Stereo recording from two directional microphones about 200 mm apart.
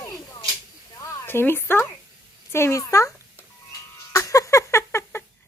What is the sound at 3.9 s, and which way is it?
Music, 15° left (ahead or behind).